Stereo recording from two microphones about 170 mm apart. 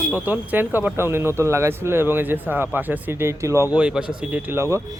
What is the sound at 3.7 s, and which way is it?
Speech, 5° right (ahead or behind).